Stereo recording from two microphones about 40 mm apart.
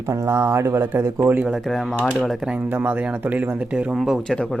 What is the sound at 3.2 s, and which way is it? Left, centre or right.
Speech, right.